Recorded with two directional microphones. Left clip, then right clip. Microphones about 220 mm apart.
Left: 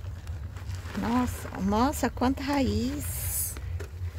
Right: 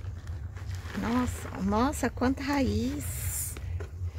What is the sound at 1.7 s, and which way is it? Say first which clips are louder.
Speech: left 2 dB; 15° left (ahead or behind).